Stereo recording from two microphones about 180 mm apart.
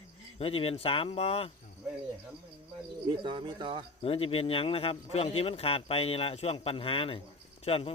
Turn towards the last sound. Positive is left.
turn(degrees=35)  # may be behind; listen again after turning